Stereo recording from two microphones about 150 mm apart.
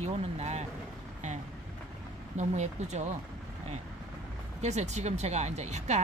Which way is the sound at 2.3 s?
50° right (ahead or behind).